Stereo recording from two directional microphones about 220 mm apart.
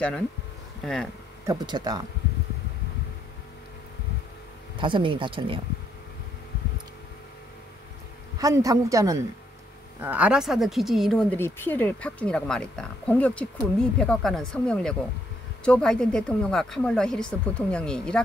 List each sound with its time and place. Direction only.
1.4 s a man's voice: 15° right (ahead or behind)
4.7 s speech: 20° right (ahead or behind)
8.4 s a man's voice: 15° right (ahead or behind); by 18.2 s 5° left (ahead or behind)